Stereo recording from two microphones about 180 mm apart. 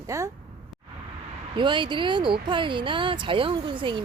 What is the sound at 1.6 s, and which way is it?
Speech, 25° right (ahead or behind).